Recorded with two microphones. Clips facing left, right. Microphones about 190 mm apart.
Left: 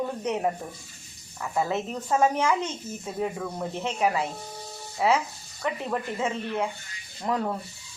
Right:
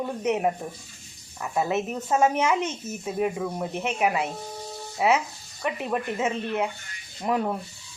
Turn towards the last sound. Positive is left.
turn(degrees=-15)  # may be behind; listen again after turning